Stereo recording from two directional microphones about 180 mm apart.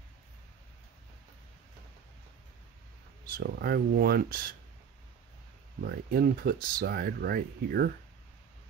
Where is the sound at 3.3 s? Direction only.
60° right (ahead or behind).